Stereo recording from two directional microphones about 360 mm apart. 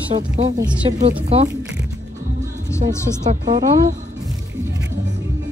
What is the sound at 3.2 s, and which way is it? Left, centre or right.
Speech, centre.